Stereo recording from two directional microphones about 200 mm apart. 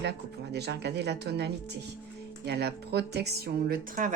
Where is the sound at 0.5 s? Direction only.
55° right (ahead or behind).